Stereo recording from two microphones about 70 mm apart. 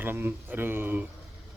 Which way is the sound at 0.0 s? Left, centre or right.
Right.